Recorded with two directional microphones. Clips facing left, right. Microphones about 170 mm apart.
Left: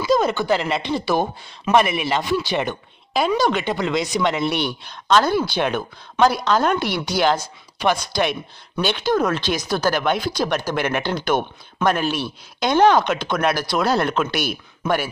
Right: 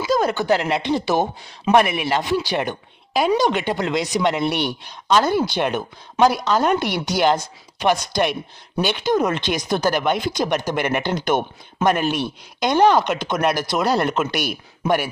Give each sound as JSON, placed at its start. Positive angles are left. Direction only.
{"t": 0.0, "sound": "speech", "side_deg": -10}